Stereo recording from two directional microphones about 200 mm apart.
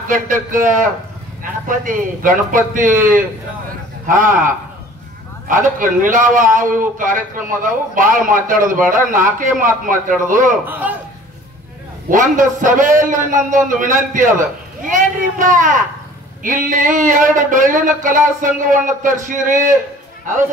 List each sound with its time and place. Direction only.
0.1 s a man's voice: 40° right (ahead or behind)
10.6 s a man's voice: 10° right (ahead or behind)
12.1 s a man's voice: 40° right (ahead or behind)